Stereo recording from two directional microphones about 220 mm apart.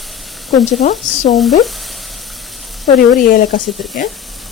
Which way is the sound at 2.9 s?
40° left (ahead or behind).